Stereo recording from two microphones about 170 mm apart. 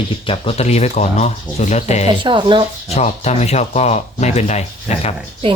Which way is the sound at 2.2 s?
30° right (ahead or behind).